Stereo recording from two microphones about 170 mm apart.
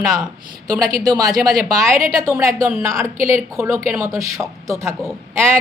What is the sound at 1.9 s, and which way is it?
A woman's voice, 20° right (ahead or behind).